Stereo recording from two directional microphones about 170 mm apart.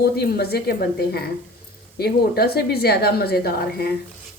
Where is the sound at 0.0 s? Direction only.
70° left (ahead or behind).